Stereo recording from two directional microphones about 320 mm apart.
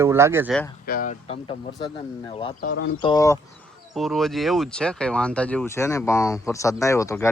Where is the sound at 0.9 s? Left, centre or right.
Left.